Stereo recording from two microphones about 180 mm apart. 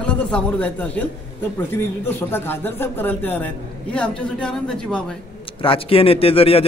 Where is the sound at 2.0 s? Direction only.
10° left (ahead or behind).